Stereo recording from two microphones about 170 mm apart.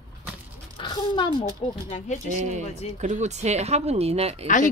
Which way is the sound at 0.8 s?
25° left (ahead or behind).